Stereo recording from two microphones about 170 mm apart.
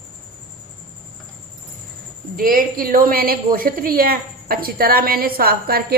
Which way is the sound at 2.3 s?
55° right (ahead or behind).